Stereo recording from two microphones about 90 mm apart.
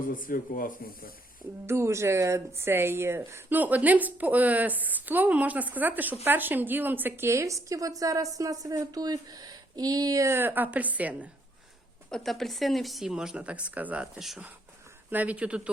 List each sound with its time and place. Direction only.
1.6 s speech: 30° right (ahead or behind)
12.1 s speech: 5° left (ahead or behind); by 14.1 s 15° right (ahead or behind)
14.2 s speech: 5° right (ahead or behind)
15.1 s speech: 15° right (ahead or behind)